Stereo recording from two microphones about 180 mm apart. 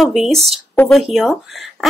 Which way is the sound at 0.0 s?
Centre (ahead or behind).